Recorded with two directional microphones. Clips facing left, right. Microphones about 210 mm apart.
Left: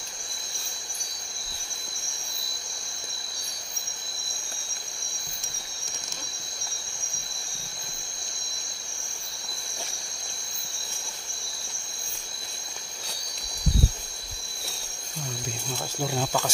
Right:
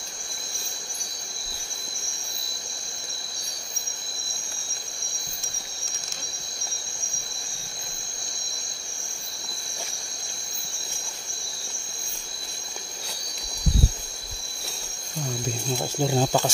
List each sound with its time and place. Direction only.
15.8 s speech: 25° right (ahead or behind)